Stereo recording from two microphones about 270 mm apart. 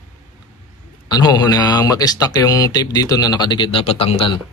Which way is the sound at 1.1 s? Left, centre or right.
Centre.